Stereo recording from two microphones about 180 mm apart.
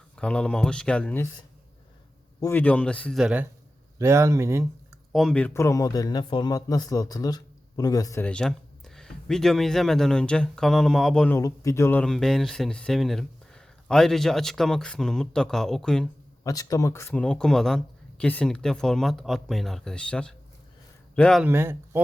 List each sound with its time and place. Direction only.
0.2 s speech: 5° left (ahead or behind)
2.4 s speech: 10° left (ahead or behind)
3.9 s speech: 15° right (ahead or behind)
5.1 s speech: 5° left (ahead or behind); by 8.2 s 20° left (ahead or behind)
8.2 s speech: 5° left (ahead or behind)
11.3 s speech: 15° left (ahead or behind)
16.4 s speech: 20° left (ahead or behind)
21.4 s speech: 15° right (ahead or behind)